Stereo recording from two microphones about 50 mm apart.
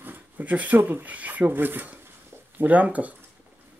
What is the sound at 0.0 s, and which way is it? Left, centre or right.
Speech, right.